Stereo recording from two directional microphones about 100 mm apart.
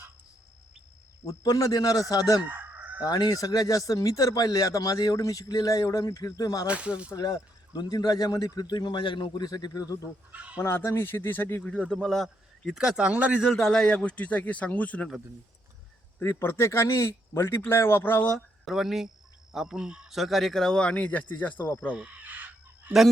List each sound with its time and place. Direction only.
1.2 s speech: 35° left (ahead or behind)
2.4 s chicken: 20° right (ahead or behind)
3.0 s speech: 40° left (ahead or behind)
6.7 s speech: 10° right (ahead or behind)
7.2 s speech: 40° left (ahead or behind)
10.3 s speech: 15° right (ahead or behind)
10.6 s speech: 25° left (ahead or behind)
11.6 s speech: 10° left (ahead or behind); by 13.4 s 10° right (ahead or behind)
13.4 s a man's voice: centre (ahead or behind)
16.1 s speech: 25° left (ahead or behind)
18.3 s speech: centre (ahead or behind)
21.9 s fowl: 15° right (ahead or behind)